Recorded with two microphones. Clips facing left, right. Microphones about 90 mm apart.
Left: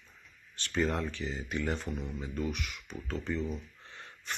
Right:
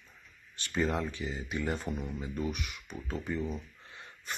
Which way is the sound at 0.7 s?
Centre (ahead or behind).